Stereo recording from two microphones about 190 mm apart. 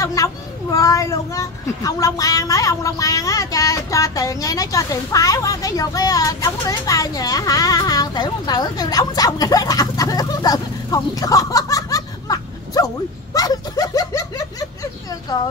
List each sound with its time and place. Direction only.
0.0 s a child's voice: 15° left (ahead or behind)